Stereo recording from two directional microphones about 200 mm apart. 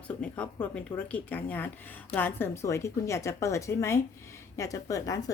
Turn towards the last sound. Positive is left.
turn(degrees=15)  # may be behind; listen again after turning